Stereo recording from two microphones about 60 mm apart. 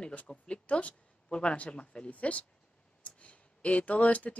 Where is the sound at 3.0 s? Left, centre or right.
Left.